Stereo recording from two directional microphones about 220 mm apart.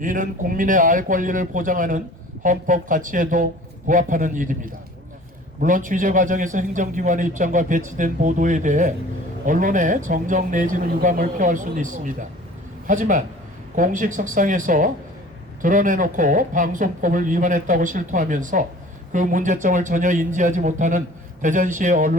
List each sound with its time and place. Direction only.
0.0 s a man's voice: 35° right (ahead or behind)